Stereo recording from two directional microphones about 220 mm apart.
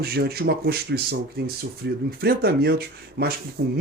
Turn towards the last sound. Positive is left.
turn(degrees=-45)  # may be behind; listen again after turning